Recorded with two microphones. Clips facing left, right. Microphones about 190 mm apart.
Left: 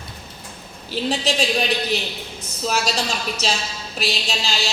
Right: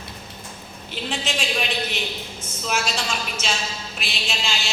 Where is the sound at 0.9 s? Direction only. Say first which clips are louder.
Left 6 dB; 35° left (ahead or behind).